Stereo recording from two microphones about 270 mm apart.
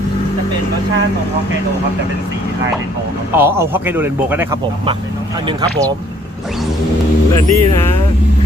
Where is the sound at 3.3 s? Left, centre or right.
Centre.